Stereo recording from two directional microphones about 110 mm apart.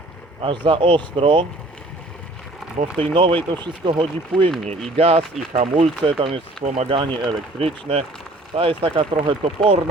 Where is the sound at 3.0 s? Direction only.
50° right (ahead or behind).